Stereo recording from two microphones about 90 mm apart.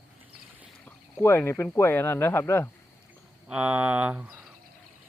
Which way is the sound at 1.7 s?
25° left (ahead or behind).